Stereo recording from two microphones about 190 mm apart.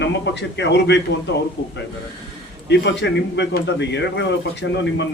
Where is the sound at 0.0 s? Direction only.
65° left (ahead or behind).